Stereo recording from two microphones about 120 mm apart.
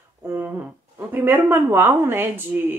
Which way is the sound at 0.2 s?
20° right (ahead or behind).